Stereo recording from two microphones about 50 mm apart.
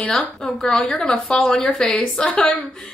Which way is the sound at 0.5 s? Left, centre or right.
Centre.